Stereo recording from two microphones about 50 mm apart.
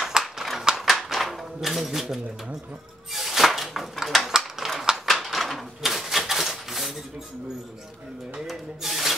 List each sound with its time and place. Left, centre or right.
0.0 s a sound: centre
5.2 s typewriter: centre
8.4 s speech: centre